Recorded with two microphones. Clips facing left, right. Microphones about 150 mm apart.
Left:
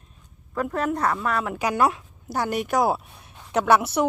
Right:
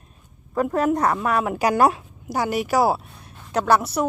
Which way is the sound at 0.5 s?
35° right (ahead or behind).